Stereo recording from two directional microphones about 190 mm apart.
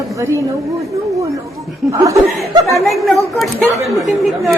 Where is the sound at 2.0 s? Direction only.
15° right (ahead or behind).